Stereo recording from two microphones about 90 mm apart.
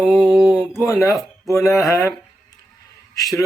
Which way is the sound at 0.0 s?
5° right (ahead or behind).